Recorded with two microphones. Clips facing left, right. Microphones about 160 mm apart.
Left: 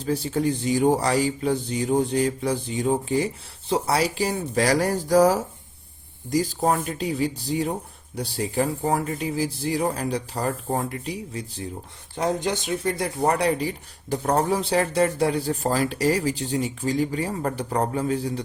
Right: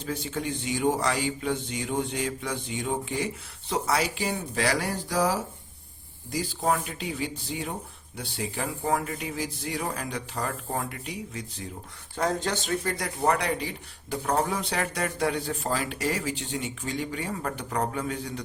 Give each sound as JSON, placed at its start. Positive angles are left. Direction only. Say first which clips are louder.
{"t": 0.0, "sound": "speech", "louder": "left 8 dB", "side_deg": 35}
{"t": 12.1, "sound": "speech", "louder": "left 3 dB", "side_deg": 15}